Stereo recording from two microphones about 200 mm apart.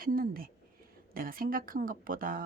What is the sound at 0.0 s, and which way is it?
Speech, 45° right (ahead or behind).